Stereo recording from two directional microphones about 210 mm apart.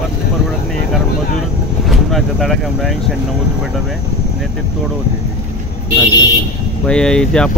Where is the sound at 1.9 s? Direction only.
Centre (ahead or behind).